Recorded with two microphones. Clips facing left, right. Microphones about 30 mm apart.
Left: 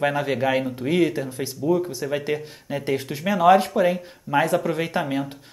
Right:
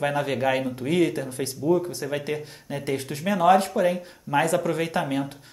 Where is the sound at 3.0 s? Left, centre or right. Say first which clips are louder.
Left 2 dB; left.